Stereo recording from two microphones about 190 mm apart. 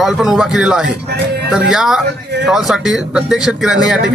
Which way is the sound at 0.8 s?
60° right (ahead or behind).